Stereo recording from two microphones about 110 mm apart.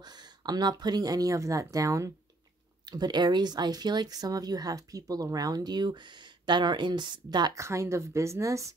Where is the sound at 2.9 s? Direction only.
40° right (ahead or behind).